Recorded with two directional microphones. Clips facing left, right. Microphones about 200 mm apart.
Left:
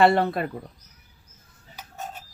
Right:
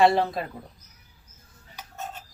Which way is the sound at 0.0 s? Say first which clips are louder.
Left 1 dB; 60° left (ahead or behind).